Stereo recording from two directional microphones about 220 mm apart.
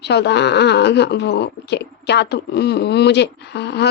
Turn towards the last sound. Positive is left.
turn(degrees=50)  # may be behind; listen again after turning